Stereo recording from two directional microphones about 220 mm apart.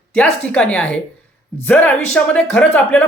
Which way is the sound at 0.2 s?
5° left (ahead or behind).